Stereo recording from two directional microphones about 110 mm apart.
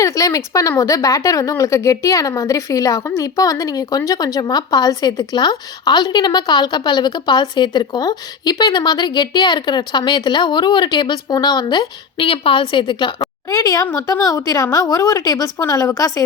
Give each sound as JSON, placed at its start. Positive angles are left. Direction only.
{"t": 0.0, "sound": "a woman's voice", "side_deg": 30}
{"t": 12.2, "sound": "a woman's voice", "side_deg": 55}
{"t": 13.5, "sound": "a woman's voice", "side_deg": 30}